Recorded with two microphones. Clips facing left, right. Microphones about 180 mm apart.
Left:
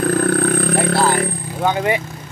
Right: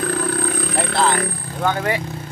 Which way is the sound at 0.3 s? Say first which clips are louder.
Left 6 dB; 55° left (ahead or behind).